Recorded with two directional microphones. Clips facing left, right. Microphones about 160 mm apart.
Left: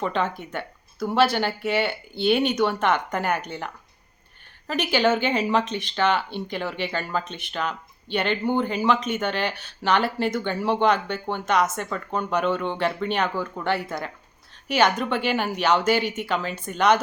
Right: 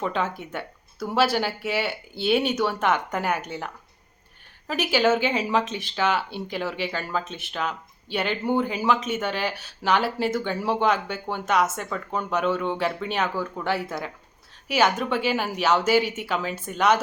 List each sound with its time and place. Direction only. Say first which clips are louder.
0.0 s speech: left 1 dB; 5° right (ahead or behind)